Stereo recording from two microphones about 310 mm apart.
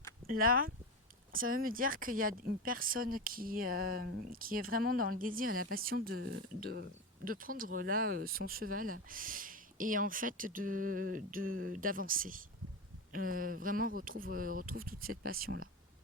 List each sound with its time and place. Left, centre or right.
0.3 s speech: right